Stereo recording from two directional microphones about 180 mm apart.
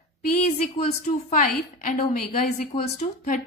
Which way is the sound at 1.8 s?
50° left (ahead or behind).